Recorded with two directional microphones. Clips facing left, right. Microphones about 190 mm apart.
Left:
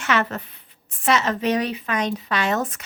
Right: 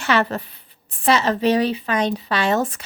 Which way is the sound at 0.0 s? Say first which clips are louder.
Right 3 dB; 35° right (ahead or behind).